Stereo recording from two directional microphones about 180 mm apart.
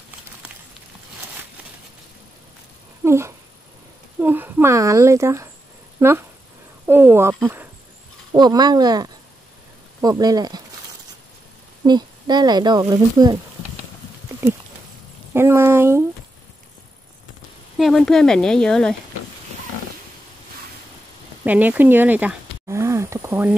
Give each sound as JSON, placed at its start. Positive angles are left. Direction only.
{"t": 3.0, "sound": "cat", "side_deg": -15}
{"t": 4.2, "sound": "speech", "side_deg": -10}
{"t": 11.8, "sound": "speech", "side_deg": -25}
{"t": 15.3, "sound": "speech", "side_deg": -15}
{"t": 17.7, "sound": "speech", "side_deg": 0}
{"t": 21.5, "sound": "speech", "side_deg": -10}